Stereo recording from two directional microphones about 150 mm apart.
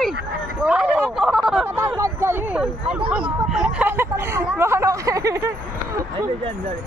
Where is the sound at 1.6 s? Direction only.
15° right (ahead or behind).